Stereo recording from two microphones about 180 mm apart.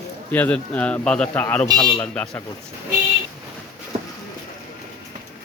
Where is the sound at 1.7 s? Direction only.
25° left (ahead or behind).